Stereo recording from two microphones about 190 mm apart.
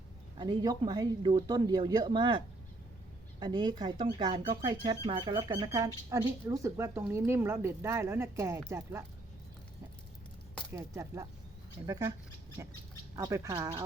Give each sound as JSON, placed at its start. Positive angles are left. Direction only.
{"t": 0.3, "sound": "speech", "side_deg": -20}
{"t": 3.4, "sound": "speech", "side_deg": -25}
{"t": 10.8, "sound": "speech", "side_deg": -15}